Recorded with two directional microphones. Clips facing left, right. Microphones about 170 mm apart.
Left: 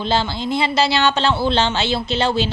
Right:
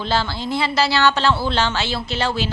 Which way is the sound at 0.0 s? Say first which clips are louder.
Left 2 dB; 20° left (ahead or behind).